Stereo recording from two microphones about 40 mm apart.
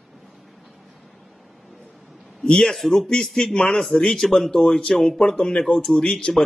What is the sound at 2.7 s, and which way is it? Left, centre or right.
Speech, centre.